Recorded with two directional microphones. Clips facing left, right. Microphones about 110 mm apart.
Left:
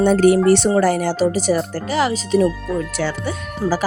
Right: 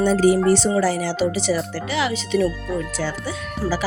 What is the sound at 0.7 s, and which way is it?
Speech, 50° left (ahead or behind).